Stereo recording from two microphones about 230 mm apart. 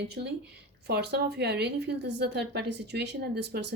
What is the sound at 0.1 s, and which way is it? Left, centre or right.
Speech, right.